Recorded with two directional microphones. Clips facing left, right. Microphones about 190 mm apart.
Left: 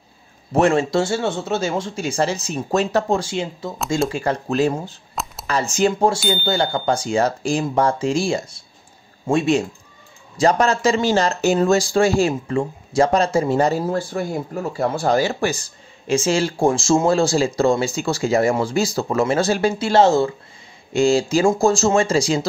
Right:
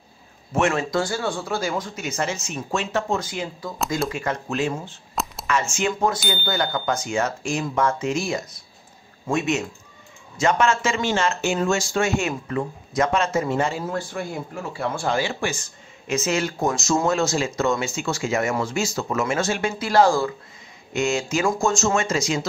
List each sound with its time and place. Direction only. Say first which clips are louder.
0.5 s speech: left 5 dB; 35° left (ahead or behind)
5.2 s a sound: right 1 dB; centre (ahead or behind)
5.5 s speech: left 5 dB; 35° left (ahead or behind)